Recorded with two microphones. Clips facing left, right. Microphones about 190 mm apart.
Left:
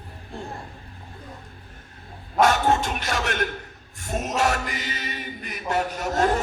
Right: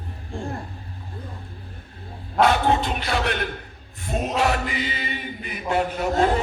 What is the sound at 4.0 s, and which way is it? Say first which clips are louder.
Chant: right 1 dB; 45° left (ahead or behind).